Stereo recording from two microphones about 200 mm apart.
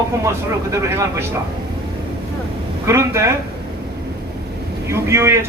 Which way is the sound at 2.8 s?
15° right (ahead or behind).